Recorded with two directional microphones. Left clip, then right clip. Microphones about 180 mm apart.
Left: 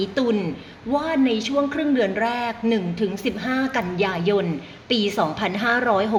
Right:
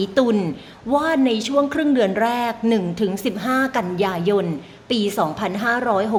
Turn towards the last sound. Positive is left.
turn(degrees=-5)  # may be behind; listen again after turning